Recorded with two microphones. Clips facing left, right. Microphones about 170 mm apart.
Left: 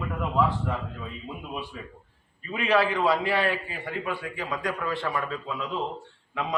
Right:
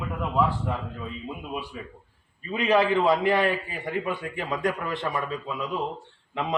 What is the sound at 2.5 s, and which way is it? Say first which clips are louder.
A man's voice: right 2 dB; 20° right (ahead or behind).